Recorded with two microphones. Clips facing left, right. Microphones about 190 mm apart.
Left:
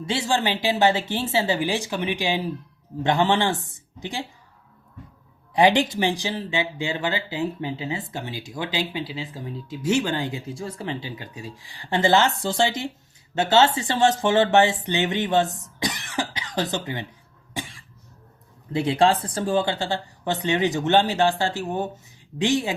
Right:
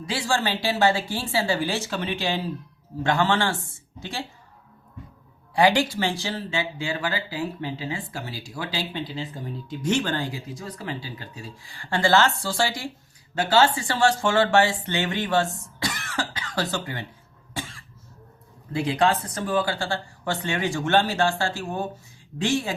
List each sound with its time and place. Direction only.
0.0 s speech: 25° left (ahead or behind)
5.5 s speech: 20° left (ahead or behind)
15.6 s cough: 15° left (ahead or behind)
16.7 s speech: 20° left (ahead or behind)
17.5 s cough: 15° left (ahead or behind)
18.7 s speech: 25° left (ahead or behind)